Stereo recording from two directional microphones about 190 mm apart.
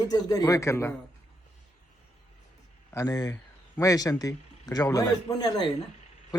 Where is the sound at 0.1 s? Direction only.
20° left (ahead or behind).